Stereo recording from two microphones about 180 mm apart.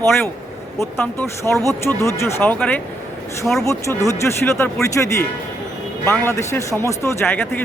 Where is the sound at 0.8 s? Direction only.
15° left (ahead or behind).